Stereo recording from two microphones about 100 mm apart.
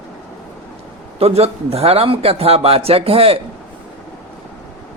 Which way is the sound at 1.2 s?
85° right.